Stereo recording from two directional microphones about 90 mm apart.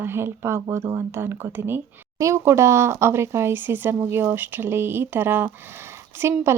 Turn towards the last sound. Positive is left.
turn(degrees=-30)  # may be behind; listen again after turning